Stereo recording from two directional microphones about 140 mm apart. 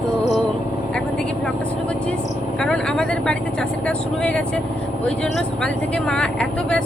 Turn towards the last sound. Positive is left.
turn(degrees=5)  # may be behind; listen again after turning